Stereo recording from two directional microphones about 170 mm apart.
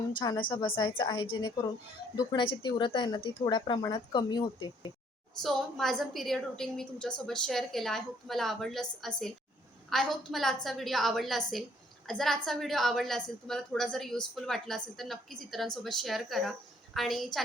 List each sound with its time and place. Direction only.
0.2 s speech: 30° left (ahead or behind)
5.4 s a woman's voice: centre (ahead or behind)